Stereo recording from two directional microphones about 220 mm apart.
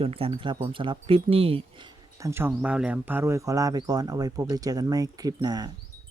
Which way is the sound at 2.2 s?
10° right (ahead or behind).